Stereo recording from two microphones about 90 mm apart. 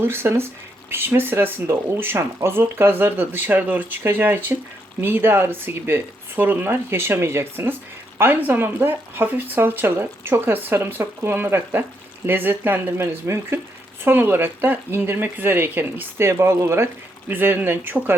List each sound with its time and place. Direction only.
0.0 s speech: 25° right (ahead or behind)